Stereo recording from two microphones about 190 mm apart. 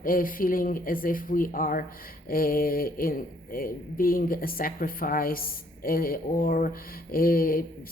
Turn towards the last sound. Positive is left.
turn(degrees=50)  # may be behind; listen again after turning